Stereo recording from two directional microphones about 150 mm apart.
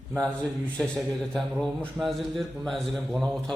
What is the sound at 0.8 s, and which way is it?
A man's voice, centre (ahead or behind).